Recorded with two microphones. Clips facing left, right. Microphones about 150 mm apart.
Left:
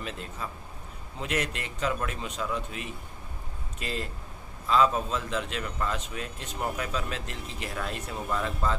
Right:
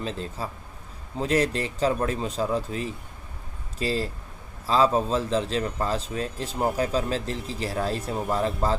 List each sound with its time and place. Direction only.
0.0 s a man's voice: 30° right (ahead or behind)